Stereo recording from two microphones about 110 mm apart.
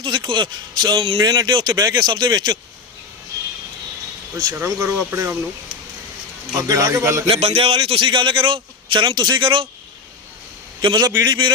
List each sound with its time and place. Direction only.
0.0 s a man's voice: 45° right (ahead or behind)
4.5 s speech: 25° right (ahead or behind)
6.6 s speech: 30° right (ahead or behind)
7.3 s a man's voice: 60° right (ahead or behind)
10.8 s a man's voice: 45° right (ahead or behind)